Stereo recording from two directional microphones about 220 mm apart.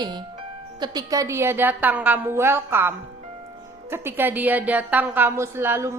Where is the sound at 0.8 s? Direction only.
15° right (ahead or behind).